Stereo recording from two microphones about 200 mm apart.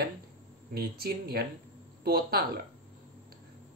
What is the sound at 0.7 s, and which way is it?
Speech, 50° right (ahead or behind).